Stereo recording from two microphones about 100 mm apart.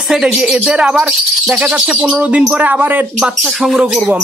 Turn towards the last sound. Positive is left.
turn(degrees=-5)  # may be behind; listen again after turning